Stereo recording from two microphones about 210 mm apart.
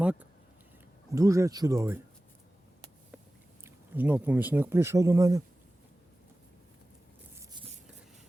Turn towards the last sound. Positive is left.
turn(degrees=-20)  # may be behind; listen again after turning